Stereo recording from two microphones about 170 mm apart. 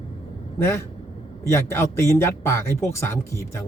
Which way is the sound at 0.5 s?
15° left (ahead or behind).